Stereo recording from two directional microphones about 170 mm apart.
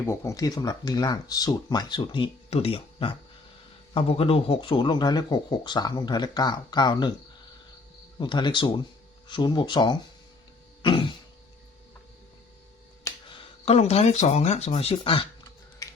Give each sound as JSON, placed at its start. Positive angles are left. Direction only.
{"t": 0.0, "sound": "speech", "side_deg": 15}
{"t": 8.2, "sound": "speech", "side_deg": 25}
{"t": 10.8, "sound": "throat clearing", "side_deg": 30}
{"t": 13.2, "sound": "speech", "side_deg": 35}
{"t": 15.8, "sound": "finger snapping", "side_deg": 20}